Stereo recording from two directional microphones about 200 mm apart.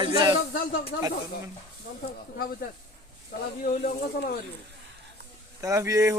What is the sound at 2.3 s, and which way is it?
Speech, 45° left (ahead or behind).